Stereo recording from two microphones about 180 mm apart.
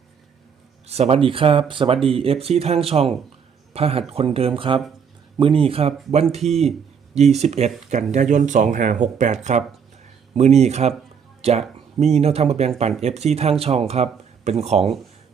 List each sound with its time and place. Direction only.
0.9 s speech: 35° right (ahead or behind)